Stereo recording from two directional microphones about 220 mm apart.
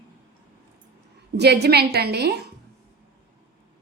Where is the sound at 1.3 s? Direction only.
50° right (ahead or behind).